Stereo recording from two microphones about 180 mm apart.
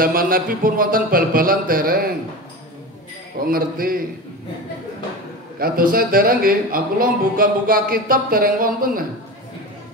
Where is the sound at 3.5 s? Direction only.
55° right (ahead or behind).